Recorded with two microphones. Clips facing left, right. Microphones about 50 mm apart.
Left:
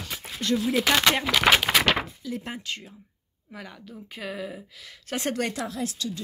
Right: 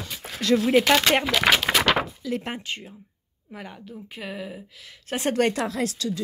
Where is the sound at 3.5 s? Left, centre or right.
Centre.